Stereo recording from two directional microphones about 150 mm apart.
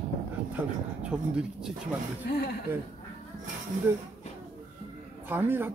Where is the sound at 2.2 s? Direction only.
90° left.